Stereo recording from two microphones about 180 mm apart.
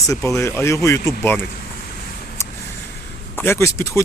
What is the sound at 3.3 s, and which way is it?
Speech, 10° left (ahead or behind).